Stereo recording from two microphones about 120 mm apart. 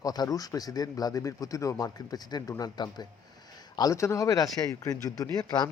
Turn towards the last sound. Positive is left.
turn(degrees=35)  # may be behind; listen again after turning